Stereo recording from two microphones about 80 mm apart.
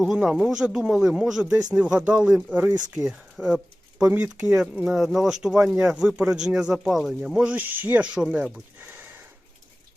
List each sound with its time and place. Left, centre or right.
0.1 s speech: centre; by 3.0 s right
3.0 s speech: centre
7.5 s speech: right
8.8 s a sound: right